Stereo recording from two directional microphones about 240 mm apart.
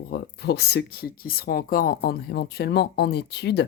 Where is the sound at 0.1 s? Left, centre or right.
Left.